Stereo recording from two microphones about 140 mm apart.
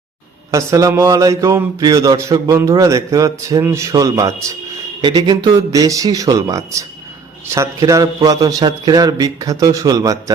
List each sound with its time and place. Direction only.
0.5 s speech: 20° right (ahead or behind)
4.9 s speech: 35° right (ahead or behind)